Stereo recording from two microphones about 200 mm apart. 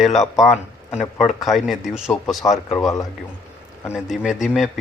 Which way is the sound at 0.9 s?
Centre (ahead or behind).